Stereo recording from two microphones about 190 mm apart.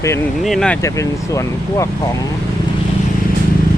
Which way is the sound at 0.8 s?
15° left (ahead or behind).